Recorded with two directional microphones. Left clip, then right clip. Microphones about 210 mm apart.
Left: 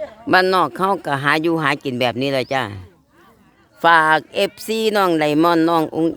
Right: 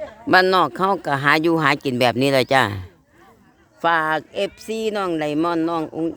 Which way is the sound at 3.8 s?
10° left (ahead or behind).